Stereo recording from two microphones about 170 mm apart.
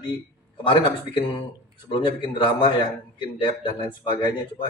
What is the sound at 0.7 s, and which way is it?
A man's voice, 30° left (ahead or behind).